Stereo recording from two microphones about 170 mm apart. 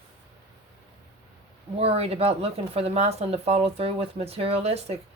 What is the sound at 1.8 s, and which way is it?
Speech, 35° right (ahead or behind).